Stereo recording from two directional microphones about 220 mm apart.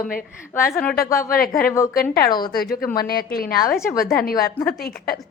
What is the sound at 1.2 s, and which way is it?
Speech, 40° left (ahead or behind).